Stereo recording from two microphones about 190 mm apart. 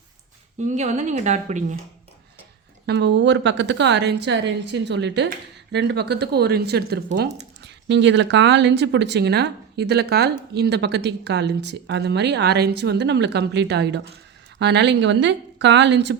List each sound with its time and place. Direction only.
0.7 s a woman's voice: 40° right (ahead or behind)
2.8 s speech: 65° right (ahead or behind)